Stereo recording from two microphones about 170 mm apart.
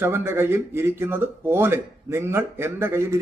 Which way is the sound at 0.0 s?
15° right (ahead or behind).